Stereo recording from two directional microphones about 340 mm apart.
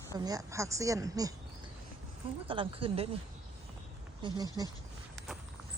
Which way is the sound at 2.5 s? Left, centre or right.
Centre.